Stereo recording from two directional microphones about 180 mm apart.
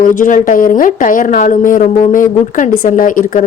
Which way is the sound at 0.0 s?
50° left (ahead or behind).